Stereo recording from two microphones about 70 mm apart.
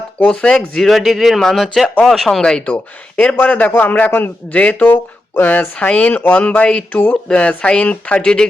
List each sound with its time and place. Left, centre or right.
0.2 s speech: centre
0.5 s speech: centre
3.4 s speech: left